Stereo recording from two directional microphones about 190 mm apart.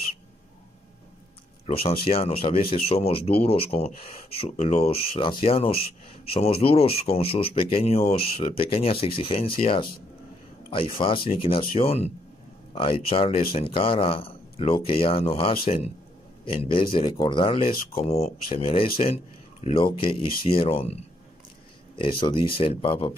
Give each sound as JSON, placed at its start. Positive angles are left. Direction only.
{"t": 1.7, "sound": "speech", "side_deg": 30}